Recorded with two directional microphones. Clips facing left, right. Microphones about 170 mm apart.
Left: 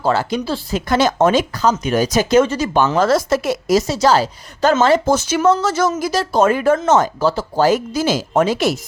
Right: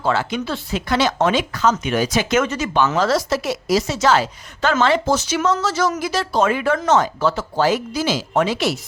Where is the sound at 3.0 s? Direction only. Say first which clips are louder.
Left 3 dB; 50° left (ahead or behind).